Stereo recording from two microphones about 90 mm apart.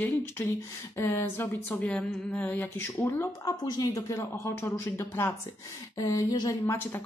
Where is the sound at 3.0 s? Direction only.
30° left (ahead or behind).